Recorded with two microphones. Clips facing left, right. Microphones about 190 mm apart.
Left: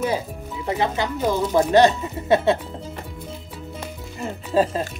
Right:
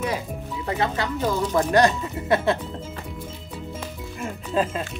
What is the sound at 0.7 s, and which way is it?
Speech, 20° left (ahead or behind).